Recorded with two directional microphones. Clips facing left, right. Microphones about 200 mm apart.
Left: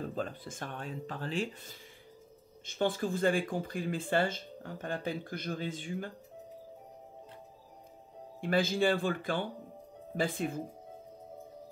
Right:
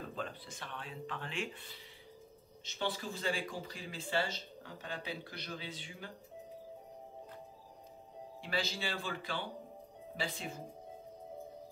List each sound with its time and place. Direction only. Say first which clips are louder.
0.1 s speech: left 6 dB; 45° left (ahead or behind)
2.6 s speech: left 8 dB; 50° left (ahead or behind)
8.4 s speech: left 10 dB; 50° left (ahead or behind)